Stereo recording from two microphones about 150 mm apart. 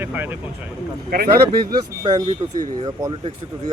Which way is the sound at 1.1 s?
90° right.